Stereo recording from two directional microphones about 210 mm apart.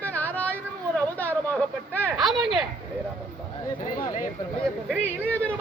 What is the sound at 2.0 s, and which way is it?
Speech, centre (ahead or behind).